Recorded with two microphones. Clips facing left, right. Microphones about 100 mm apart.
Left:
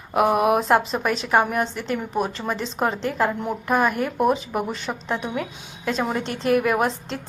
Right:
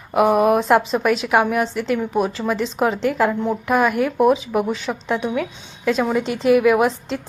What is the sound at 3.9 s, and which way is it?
Speech, 35° left (ahead or behind).